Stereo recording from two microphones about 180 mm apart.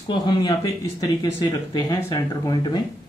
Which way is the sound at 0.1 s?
25° left (ahead or behind).